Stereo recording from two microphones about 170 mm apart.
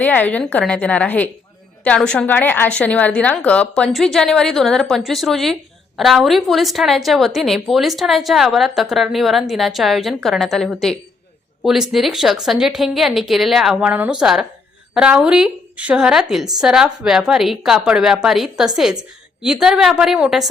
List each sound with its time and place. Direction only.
0.0 s a woman's voice: 10° left (ahead or behind)